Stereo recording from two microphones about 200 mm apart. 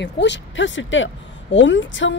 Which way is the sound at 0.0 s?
60° left (ahead or behind).